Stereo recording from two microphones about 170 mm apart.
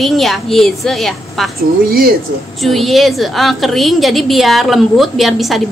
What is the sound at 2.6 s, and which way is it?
A woman's voice, centre (ahead or behind).